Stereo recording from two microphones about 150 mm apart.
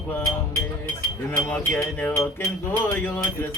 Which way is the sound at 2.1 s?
20° left (ahead or behind).